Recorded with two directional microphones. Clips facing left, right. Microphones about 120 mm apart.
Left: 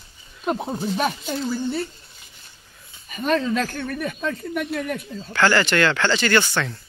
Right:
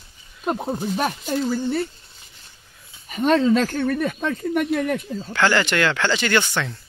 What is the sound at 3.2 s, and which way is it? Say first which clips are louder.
Speech: right 4 dB; 75° right (ahead or behind).